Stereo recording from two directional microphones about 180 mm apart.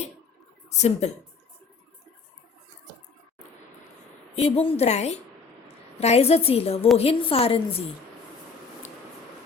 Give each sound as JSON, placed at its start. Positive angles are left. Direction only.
{"t": 0.7, "sound": "a woman's voice", "side_deg": 40}
{"t": 4.4, "sound": "a woman's voice", "side_deg": 35}